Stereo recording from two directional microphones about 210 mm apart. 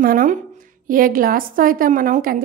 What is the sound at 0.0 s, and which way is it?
A woman's voice, 40° right (ahead or behind).